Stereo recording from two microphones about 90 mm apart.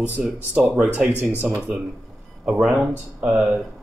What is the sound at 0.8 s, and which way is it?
Speech, 15° right (ahead or behind).